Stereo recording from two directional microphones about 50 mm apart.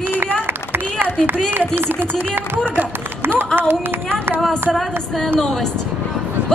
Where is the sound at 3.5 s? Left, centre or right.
Right.